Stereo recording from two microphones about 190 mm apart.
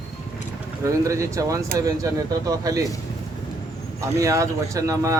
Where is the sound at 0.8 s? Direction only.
15° right (ahead or behind).